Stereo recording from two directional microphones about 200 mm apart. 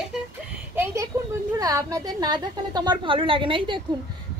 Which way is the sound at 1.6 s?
15° right (ahead or behind).